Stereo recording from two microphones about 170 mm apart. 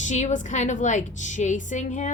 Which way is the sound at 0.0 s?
40° left (ahead or behind).